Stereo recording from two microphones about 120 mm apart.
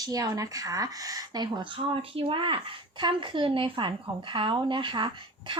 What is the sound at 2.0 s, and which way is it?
Speech, 50° right (ahead or behind).